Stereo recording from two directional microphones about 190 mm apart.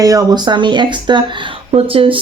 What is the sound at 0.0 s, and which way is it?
Speech, 20° right (ahead or behind).